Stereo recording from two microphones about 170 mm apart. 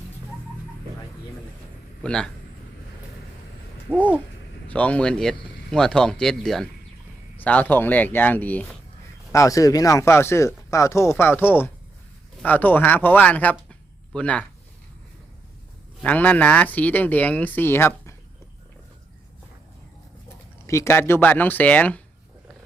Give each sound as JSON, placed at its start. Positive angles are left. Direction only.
{"t": 2.0, "sound": "speech", "side_deg": 5}
{"t": 4.7, "sound": "speech", "side_deg": 10}
{"t": 16.0, "sound": "speech", "side_deg": 10}
{"t": 20.7, "sound": "speech", "side_deg": 15}